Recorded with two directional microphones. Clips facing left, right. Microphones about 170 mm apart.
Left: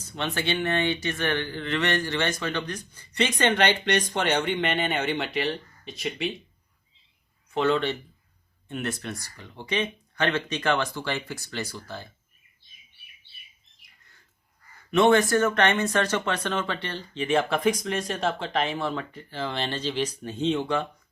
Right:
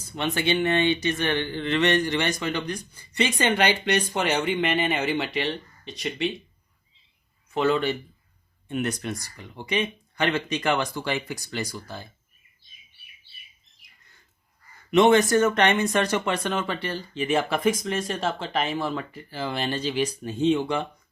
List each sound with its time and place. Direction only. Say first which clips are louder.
0.0 s speech: right 3 dB; 15° right (ahead or behind)
7.5 s speech: right 1 dB; 5° right (ahead or behind)
14.8 s speech: right 2 dB; 20° right (ahead or behind)